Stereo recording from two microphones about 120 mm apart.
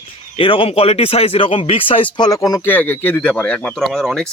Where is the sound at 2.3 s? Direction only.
30° left (ahead or behind).